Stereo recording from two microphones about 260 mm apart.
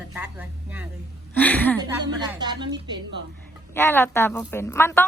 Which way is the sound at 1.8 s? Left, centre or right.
Centre.